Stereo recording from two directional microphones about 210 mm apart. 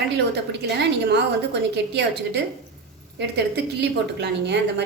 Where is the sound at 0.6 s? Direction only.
55° right (ahead or behind).